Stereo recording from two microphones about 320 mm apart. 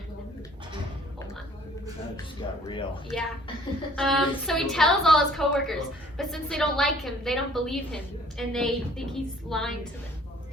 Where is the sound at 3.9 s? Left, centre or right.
Centre.